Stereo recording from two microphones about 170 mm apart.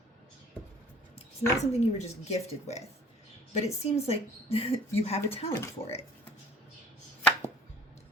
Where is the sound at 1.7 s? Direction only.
40° left (ahead or behind).